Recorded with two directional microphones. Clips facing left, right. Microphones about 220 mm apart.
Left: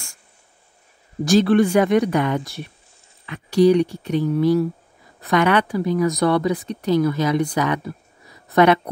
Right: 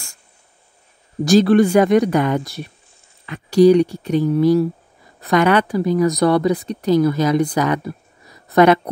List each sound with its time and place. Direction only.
1.2 s a woman's voice: 40° right (ahead or behind)